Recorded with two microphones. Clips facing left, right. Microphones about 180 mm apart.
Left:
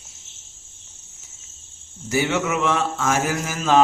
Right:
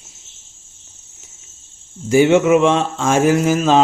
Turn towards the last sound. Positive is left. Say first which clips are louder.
# right 6 dB
turn(degrees=-20)  # may be behind; listen again after turning